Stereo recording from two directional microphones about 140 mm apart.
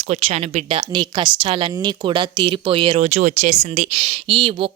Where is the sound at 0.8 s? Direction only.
30° right (ahead or behind).